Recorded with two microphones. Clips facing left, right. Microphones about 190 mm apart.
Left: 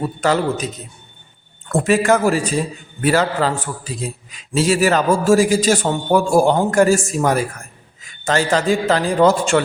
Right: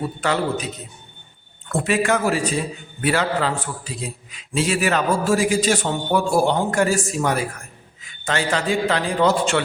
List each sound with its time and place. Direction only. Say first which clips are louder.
0.2 s a man's voice: left 5 dB; 40° left (ahead or behind)
1.7 s a man's voice: left 5 dB; 45° left (ahead or behind)